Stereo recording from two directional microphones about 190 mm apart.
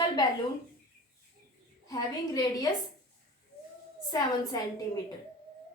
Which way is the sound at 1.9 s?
20° left (ahead or behind).